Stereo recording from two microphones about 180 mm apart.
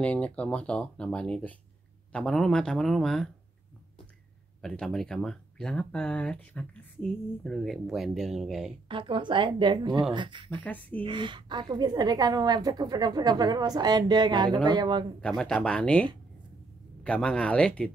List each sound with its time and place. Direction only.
0.0 s speech: 5° left (ahead or behind)
4.6 s speech: 5° left (ahead or behind)
8.8 s a woman's voice: 30° right (ahead or behind)
10.6 s speech: 10° left (ahead or behind)
11.0 s a woman's voice: 25° right (ahead or behind)
15.1 s speech: 5° left (ahead or behind)